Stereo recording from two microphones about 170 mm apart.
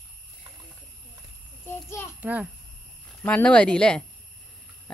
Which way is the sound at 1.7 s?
15° left (ahead or behind).